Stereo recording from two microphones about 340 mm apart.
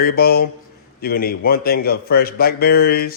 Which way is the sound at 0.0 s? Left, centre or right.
Left.